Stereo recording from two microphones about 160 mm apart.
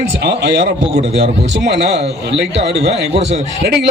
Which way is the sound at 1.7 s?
90° right.